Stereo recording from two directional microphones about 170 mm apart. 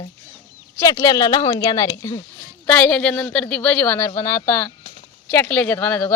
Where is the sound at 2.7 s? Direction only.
5° left (ahead or behind).